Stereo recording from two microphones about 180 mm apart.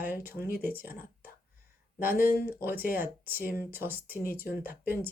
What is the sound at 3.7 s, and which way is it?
Speech, 10° right (ahead or behind).